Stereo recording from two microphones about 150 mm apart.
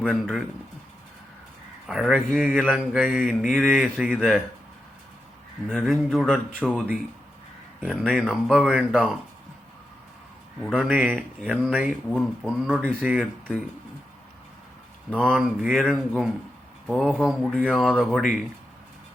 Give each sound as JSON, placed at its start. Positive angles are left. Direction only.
{"t": 0.0, "sound": "speech", "side_deg": 0}
{"t": 1.9, "sound": "speech", "side_deg": -5}
{"t": 5.6, "sound": "speech", "side_deg": 0}
{"t": 7.9, "sound": "speech", "side_deg": 0}
{"t": 10.6, "sound": "speech", "side_deg": 0}
{"t": 10.9, "sound": "speech", "side_deg": -10}
{"t": 15.1, "sound": "speech", "side_deg": 0}